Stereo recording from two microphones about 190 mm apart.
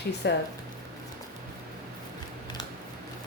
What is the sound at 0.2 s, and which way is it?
Speech, 65° left (ahead or behind).